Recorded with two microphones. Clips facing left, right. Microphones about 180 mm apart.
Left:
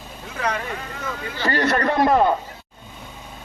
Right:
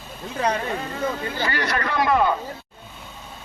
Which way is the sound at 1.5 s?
40° left (ahead or behind).